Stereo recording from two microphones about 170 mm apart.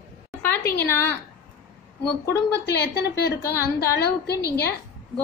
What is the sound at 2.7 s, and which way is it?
Speech, 90° left.